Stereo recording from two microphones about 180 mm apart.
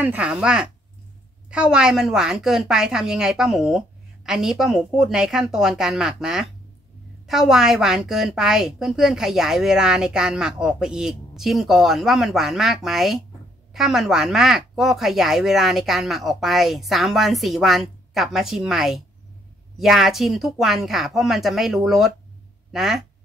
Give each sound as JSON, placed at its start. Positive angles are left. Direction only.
{"t": 0.0, "sound": "a woman's voice", "side_deg": -10}